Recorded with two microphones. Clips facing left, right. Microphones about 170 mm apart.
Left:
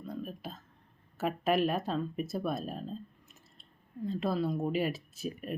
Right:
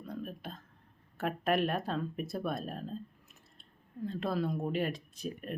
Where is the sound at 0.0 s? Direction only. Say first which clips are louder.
Left 1 dB; centre (ahead or behind).